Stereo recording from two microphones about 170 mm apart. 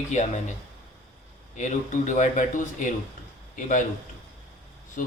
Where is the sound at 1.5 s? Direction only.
45° left (ahead or behind).